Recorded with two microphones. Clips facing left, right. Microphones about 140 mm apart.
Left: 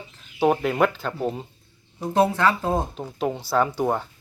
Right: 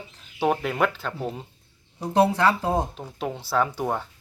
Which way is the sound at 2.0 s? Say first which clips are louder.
Even; 10° right (ahead or behind).